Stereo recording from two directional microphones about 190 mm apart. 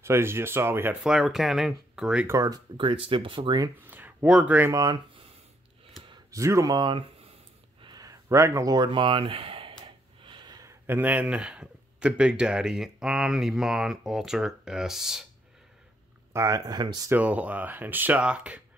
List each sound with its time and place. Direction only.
0.0 s speech: 15° right (ahead or behind)
2.2 s speech: 20° right (ahead or behind)
3.8 s speech: 10° right (ahead or behind)
16.3 s speech: 15° right (ahead or behind)
17.2 s speech: 10° right (ahead or behind)